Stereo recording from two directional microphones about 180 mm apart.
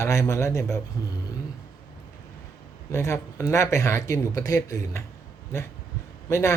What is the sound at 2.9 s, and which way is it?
Speech, 15° left (ahead or behind).